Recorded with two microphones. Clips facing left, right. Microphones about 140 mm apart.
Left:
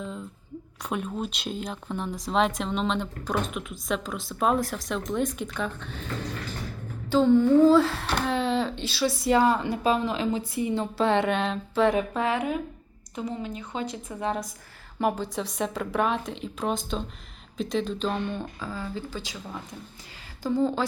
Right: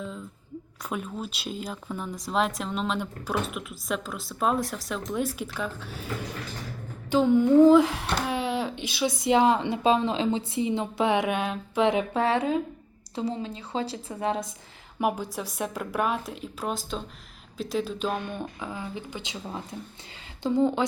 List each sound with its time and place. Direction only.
0.8 s a woman's voice: centre (ahead or behind); by 14.2 s 30° right (ahead or behind)
14.9 s a woman's voice: 10° right (ahead or behind)